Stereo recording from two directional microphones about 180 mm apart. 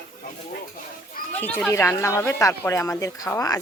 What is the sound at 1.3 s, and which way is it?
Speech, 10° left (ahead or behind).